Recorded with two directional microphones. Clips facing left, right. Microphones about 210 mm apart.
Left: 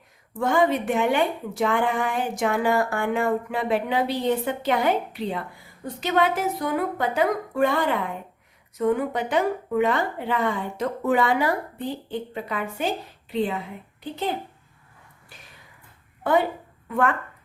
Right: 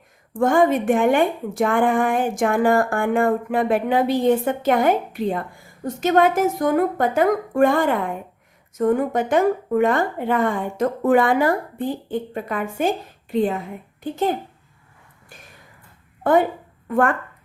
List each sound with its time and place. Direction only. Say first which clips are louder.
0.3 s a woman's voice: right 4 dB; 50° right (ahead or behind)
16.2 s a woman's voice: right 4 dB; 50° right (ahead or behind)